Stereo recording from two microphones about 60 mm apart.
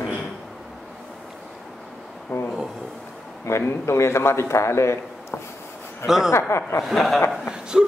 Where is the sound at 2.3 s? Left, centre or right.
Left.